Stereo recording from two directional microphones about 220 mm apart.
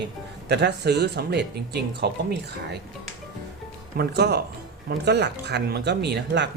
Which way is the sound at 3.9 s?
50° right (ahead or behind).